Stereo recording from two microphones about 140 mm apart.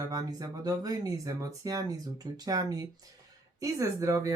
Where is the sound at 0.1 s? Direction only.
25° right (ahead or behind).